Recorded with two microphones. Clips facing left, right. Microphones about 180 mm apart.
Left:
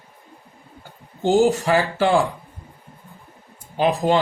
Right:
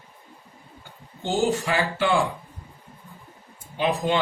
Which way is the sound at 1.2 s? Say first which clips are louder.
Left 7 dB; 40° left (ahead or behind).